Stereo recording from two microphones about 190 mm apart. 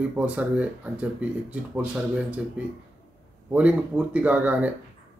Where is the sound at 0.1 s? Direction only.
5° right (ahead or behind).